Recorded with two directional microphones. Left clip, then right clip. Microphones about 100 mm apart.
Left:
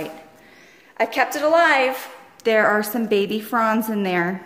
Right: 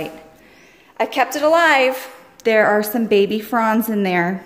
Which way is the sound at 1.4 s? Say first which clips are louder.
Right 3 dB; 45° right (ahead or behind).